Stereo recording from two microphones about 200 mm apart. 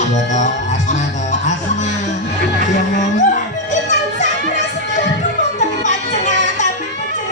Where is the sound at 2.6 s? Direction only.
35° left (ahead or behind).